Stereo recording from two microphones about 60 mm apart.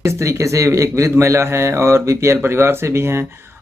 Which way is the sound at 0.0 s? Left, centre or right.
Right.